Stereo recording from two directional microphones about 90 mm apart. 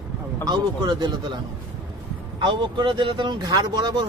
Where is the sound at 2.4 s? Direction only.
60° right (ahead or behind).